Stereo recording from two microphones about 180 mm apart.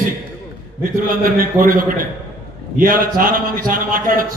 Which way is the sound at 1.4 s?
50° right (ahead or behind).